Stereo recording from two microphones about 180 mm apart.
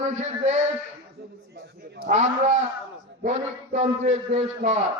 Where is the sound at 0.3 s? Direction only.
40° right (ahead or behind).